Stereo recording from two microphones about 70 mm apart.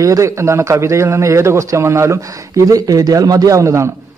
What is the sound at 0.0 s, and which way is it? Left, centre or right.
A man's voice, right.